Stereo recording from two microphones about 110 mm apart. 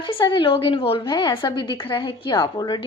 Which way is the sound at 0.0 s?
45° left (ahead or behind).